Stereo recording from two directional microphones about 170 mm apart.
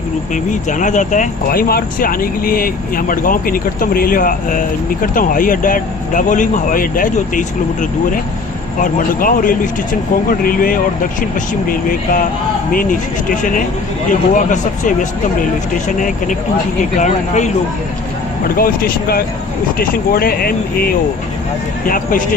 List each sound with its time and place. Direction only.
0.5 s speech: 50° left (ahead or behind)
8.7 s speech: 50° left (ahead or behind)
14.3 s speech: 50° left (ahead or behind)
17.0 s speech: 45° left (ahead or behind)
18.6 s speech: 60° left (ahead or behind)